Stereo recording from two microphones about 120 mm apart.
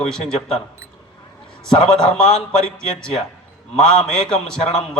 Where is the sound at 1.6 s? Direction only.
5° left (ahead or behind).